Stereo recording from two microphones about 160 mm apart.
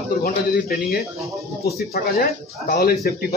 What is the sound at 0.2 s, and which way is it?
Speech, 70° left (ahead or behind).